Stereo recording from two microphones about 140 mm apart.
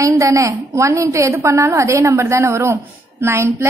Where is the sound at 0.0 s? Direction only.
20° right (ahead or behind).